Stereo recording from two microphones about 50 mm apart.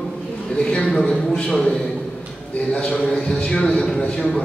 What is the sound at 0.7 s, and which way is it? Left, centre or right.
A man's voice, centre.